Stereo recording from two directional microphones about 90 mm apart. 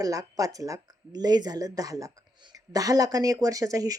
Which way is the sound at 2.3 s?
50° right (ahead or behind).